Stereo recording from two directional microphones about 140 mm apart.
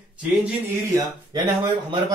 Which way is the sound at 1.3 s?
25° right (ahead or behind).